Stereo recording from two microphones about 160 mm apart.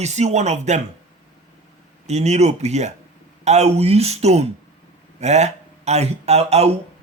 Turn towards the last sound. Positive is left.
turn(degrees=-40)  # may be behind; listen again after turning